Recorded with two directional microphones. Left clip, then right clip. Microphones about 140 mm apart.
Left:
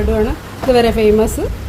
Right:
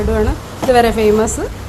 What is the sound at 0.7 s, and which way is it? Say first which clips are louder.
Speech: even; 15° left (ahead or behind).